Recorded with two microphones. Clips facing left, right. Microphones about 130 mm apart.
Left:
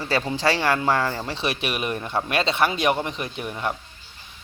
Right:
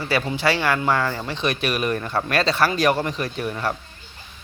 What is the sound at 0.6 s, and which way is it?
Speech, 30° left (ahead or behind).